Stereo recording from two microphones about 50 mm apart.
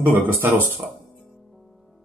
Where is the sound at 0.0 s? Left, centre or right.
Right.